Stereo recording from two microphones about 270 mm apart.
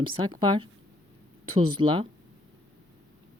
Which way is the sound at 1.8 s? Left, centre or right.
Centre.